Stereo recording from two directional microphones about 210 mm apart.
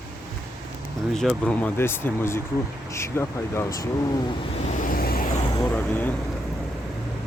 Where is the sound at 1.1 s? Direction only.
Centre (ahead or behind).